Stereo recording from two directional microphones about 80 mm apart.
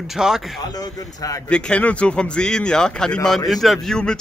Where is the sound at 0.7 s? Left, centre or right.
Left.